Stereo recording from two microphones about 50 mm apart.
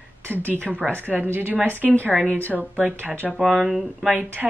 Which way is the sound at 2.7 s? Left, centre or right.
Right.